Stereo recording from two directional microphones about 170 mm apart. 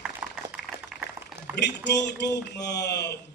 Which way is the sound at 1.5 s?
90° left.